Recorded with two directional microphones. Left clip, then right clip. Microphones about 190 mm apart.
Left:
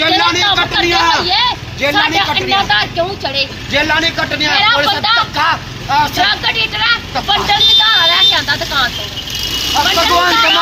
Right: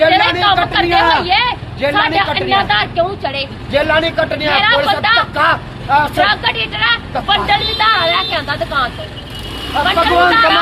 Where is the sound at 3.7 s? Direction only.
55° right (ahead or behind).